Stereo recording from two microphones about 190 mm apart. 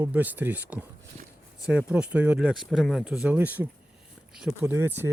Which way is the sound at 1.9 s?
5° right (ahead or behind).